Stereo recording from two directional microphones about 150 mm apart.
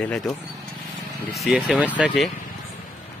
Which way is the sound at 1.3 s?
Centre (ahead or behind).